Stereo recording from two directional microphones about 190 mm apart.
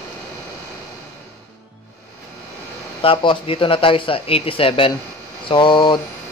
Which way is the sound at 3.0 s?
30° left (ahead or behind).